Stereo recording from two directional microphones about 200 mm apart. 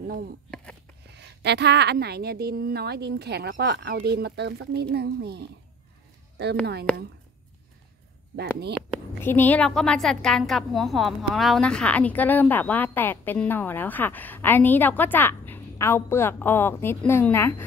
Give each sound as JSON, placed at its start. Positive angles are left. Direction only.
{"t": 1.1, "sound": "a woman's voice", "side_deg": -55}
{"t": 6.6, "sound": "a woman's voice", "side_deg": -55}
{"t": 8.4, "sound": "speech", "side_deg": -55}
{"t": 9.2, "sound": "a woman's voice", "side_deg": 10}